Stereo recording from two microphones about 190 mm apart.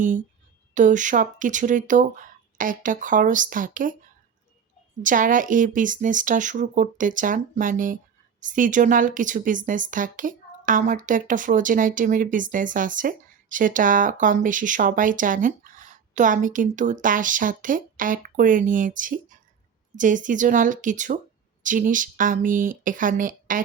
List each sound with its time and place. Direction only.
0.7 s a woman's voice: 40° right (ahead or behind)
5.0 s a woman's voice: 45° right (ahead or behind)